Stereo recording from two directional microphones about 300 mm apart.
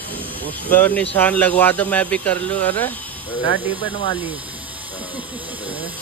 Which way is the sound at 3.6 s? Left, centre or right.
Centre.